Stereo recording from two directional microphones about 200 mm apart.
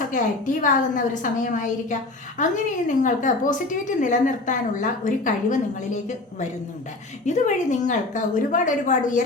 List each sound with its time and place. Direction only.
0.1 s a woman's voice: 40° left (ahead or behind)
7.3 s a woman's voice: 35° left (ahead or behind)